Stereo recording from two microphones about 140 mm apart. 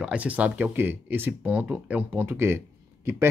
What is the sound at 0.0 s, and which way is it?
Speech, 10° right (ahead or behind).